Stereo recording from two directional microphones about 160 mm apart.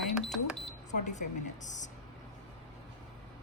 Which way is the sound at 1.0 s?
50° left (ahead or behind).